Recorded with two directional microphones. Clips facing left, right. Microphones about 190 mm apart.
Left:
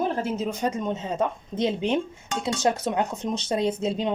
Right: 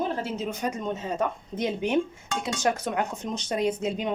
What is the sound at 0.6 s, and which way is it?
Speech, 20° left (ahead or behind).